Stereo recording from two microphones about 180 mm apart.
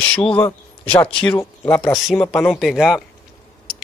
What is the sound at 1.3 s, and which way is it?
Speech, 15° left (ahead or behind).